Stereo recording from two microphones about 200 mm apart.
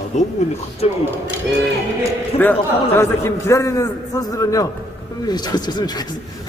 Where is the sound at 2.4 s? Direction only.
10° left (ahead or behind).